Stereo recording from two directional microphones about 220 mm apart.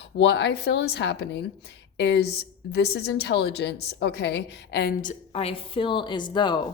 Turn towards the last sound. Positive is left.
turn(degrees=20)  # may be behind; listen again after turning